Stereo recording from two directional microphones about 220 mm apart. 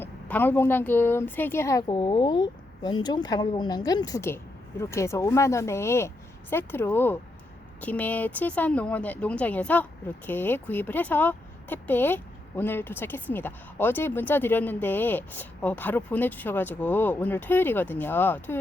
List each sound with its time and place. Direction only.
0.0 s speech: 10° left (ahead or behind)